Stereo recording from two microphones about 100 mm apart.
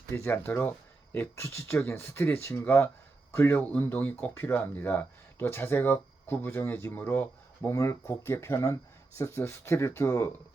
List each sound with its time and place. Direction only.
0.1 s speech: 25° left (ahead or behind)